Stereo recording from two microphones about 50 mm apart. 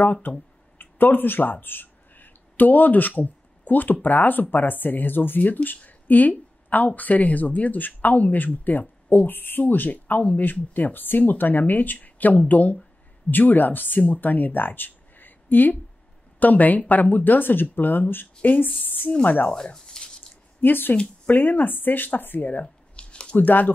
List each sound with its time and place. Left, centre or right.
0.0 s speech: left
5.9 s a sound: left
7.0 s speech: left
19.5 s speech: centre
20.6 s speech: left
22.9 s a sound: centre
23.3 s speech: left